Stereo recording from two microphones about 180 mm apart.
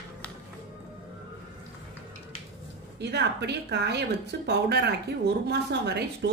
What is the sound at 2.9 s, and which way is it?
A woman's voice, 70° right (ahead or behind).